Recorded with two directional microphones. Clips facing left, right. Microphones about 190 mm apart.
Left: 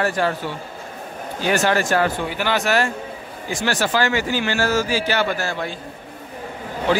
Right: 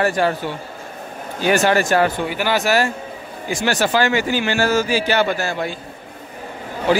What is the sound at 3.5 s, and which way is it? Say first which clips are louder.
A man's voice: right 3 dB; 15° right (ahead or behind).